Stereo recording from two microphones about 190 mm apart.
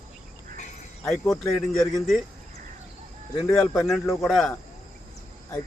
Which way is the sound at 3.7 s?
Centre (ahead or behind).